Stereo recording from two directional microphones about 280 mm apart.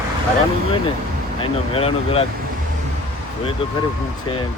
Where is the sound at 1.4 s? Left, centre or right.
Centre.